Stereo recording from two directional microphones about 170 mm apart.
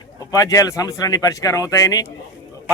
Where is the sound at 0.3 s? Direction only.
20° left (ahead or behind).